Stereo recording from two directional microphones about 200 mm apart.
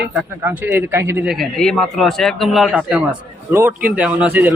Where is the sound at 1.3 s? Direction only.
Centre (ahead or behind).